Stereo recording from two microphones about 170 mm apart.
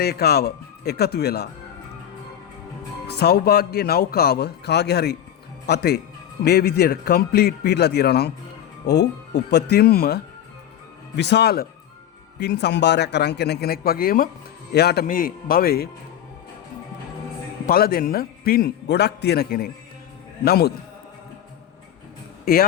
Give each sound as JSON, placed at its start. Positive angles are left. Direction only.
{"t": 0.0, "sound": "a man's voice", "side_deg": 70}
{"t": 3.1, "sound": "a man's voice", "side_deg": 70}
{"t": 11.2, "sound": "a man's voice", "side_deg": 85}
{"t": 14.7, "sound": "a man's voice", "side_deg": 70}
{"t": 15.0, "sound": "a man's voice", "side_deg": 55}
{"t": 17.7, "sound": "a man's voice", "side_deg": 60}
{"t": 22.5, "sound": "a man's voice", "side_deg": 60}